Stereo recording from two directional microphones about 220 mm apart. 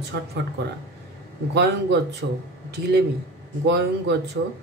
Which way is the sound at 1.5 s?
50° right (ahead or behind).